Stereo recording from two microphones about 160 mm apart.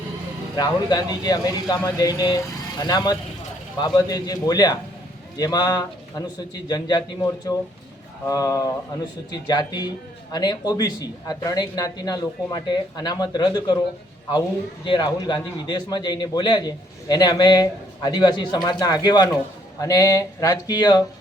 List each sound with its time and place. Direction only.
0.5 s a man's voice: 25° left (ahead or behind)
14.8 s a man's voice: 30° left (ahead or behind)